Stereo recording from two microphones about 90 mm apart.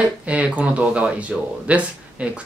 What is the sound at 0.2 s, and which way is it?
Speech, 15° right (ahead or behind).